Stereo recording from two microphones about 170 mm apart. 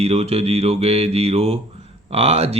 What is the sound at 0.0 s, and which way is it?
Speech, 35° right (ahead or behind).